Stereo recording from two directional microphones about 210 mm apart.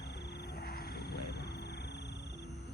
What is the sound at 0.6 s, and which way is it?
Wild animals, 45° left (ahead or behind).